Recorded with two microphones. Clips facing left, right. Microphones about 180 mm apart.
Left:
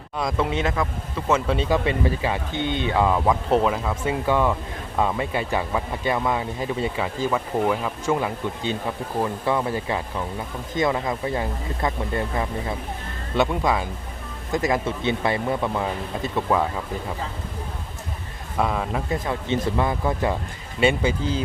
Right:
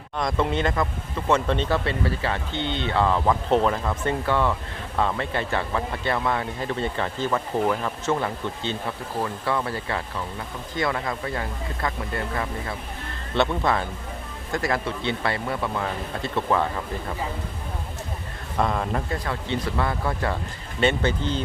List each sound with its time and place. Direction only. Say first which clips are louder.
0.2 s speech: even; 5° left (ahead or behind)
18.5 s speech: even; 5° left (ahead or behind)
19.1 s speech: left 3 dB; 20° left (ahead or behind)